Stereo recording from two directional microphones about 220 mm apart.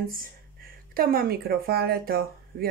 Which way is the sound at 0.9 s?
40° right (ahead or behind).